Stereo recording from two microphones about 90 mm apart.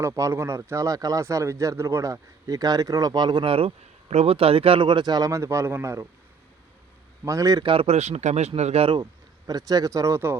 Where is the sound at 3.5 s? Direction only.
90° right; by 6.0 s 30° right (ahead or behind).